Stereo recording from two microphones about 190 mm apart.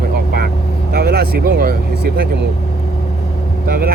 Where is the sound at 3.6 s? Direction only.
50° right (ahead or behind).